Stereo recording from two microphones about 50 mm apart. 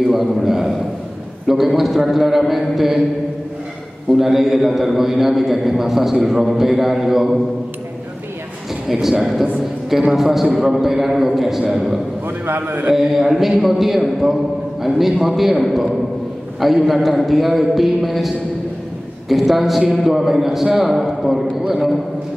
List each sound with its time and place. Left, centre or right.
0.1 s a man's voice: centre
4.2 s a man's voice: centre
9.2 s a man's voice: centre
12.4 s a man's voice: right
12.9 s a man's voice: centre